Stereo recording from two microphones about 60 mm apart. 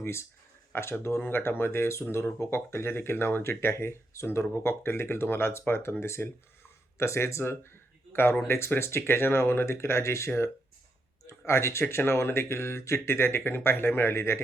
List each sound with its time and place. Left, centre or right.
0.0 s speech: left